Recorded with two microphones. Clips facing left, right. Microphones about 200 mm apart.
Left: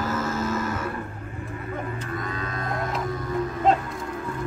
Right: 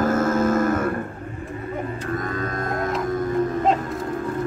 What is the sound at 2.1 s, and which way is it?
Livestock, 45° right (ahead or behind).